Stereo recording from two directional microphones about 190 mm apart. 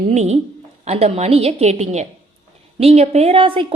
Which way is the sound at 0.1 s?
35° right (ahead or behind).